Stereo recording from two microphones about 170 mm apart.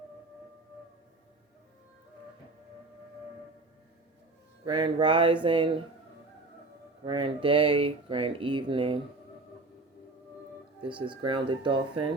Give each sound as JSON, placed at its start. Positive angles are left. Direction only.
{"t": 4.6, "sound": "speech", "side_deg": -30}
{"t": 7.0, "sound": "speech", "side_deg": -25}
{"t": 10.8, "sound": "speech", "side_deg": -30}